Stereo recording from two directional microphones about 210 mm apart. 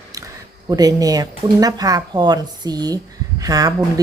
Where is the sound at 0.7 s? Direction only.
15° right (ahead or behind).